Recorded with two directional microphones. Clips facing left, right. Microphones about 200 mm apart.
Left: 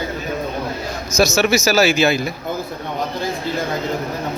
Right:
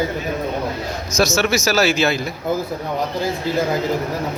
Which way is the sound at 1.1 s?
10° left (ahead or behind).